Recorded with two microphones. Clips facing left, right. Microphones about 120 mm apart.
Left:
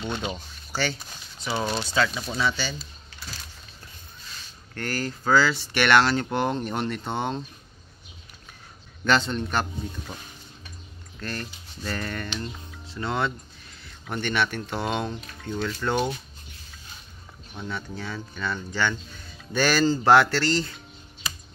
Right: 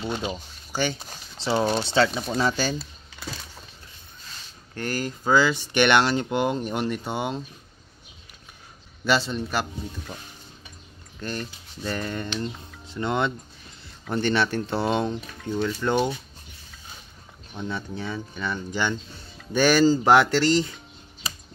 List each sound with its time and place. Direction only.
0.2 s speech: 20° right (ahead or behind)
1.4 s speech: 30° right (ahead or behind)
2.3 s speech: 45° right (ahead or behind)
4.7 s speech: 20° right (ahead or behind)
9.0 s speech: 5° right (ahead or behind)
11.1 s speech: 20° right (ahead or behind)
17.6 s speech: 25° right (ahead or behind)